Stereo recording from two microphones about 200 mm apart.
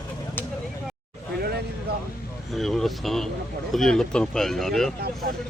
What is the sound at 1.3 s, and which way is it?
Vehicle, 50° right (ahead or behind).